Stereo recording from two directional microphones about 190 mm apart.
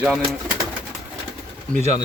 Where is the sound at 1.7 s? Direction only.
35° right (ahead or behind).